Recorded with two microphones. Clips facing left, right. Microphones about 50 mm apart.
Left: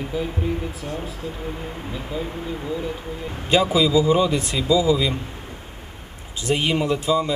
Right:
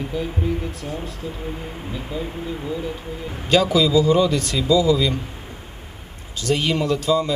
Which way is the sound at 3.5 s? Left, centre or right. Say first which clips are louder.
Right 1 dB; left.